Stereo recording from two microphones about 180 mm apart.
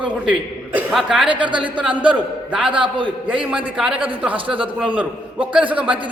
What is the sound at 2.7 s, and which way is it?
Speech, 25° right (ahead or behind).